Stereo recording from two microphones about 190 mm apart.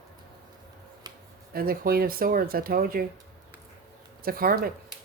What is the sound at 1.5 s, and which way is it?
Speech, 50° right (ahead or behind).